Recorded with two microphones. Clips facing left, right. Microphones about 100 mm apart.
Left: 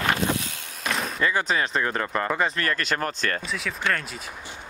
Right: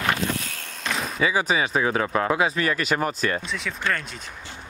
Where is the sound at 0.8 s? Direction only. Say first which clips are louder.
Right 1 dB; centre (ahead or behind).